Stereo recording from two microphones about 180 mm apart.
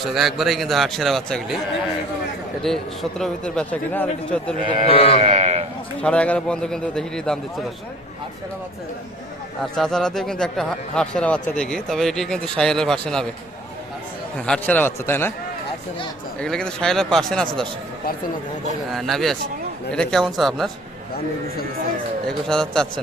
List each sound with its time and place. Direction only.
0.0 s speech: centre (ahead or behind)
2.6 s speech: centre (ahead or behind)
4.9 s speech: 30° left (ahead or behind)
5.2 s speech: 35° right (ahead or behind)
6.0 s speech: 5° left (ahead or behind)
9.7 s speech: 5° left (ahead or behind)
14.3 s a man's voice: 5° left (ahead or behind)
16.4 s speech: 5° left (ahead or behind)
18.9 s speech: centre (ahead or behind)
22.3 s speech: 5° left (ahead or behind)